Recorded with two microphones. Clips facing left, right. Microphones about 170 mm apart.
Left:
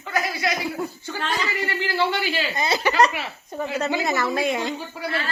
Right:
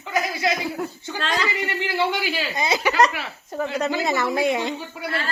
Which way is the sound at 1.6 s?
15° right (ahead or behind).